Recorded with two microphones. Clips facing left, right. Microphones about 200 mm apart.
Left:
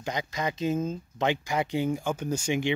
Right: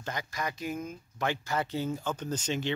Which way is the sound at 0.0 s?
20° left (ahead or behind).